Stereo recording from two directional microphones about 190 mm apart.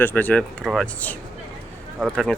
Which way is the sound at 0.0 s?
10° left (ahead or behind).